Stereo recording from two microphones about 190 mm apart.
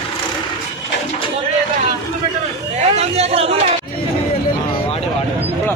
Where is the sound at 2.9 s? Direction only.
35° right (ahead or behind).